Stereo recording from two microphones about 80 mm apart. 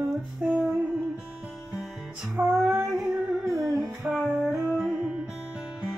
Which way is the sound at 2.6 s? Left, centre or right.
Centre.